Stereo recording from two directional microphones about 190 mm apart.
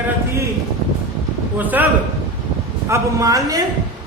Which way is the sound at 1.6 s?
10° right (ahead or behind).